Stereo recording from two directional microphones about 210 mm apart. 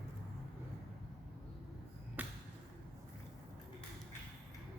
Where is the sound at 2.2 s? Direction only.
10° right (ahead or behind).